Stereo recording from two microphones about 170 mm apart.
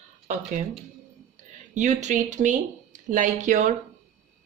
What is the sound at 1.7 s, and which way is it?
Speech, 45° right (ahead or behind).